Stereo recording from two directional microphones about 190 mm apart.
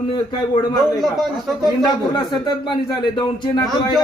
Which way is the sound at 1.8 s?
25° left (ahead or behind).